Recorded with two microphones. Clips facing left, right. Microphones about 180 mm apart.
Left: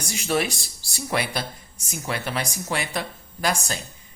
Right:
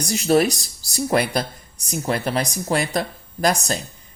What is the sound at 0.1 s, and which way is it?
Speech, 40° right (ahead or behind).